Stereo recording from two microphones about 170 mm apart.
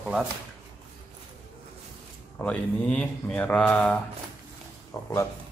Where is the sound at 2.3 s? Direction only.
10° left (ahead or behind).